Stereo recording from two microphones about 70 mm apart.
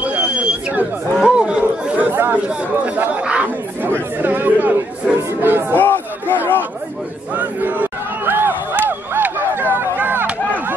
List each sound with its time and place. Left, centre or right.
0.0 s a sound: right
1.2 s chatter: centre; by 2.3 s right
2.4 s speech: right
5.1 s chatter: right
5.8 s crowd: left
7.3 s crowd: right
9.9 s chop: right